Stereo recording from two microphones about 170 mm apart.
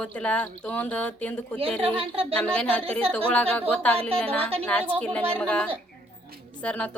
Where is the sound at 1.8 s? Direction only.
35° right (ahead or behind).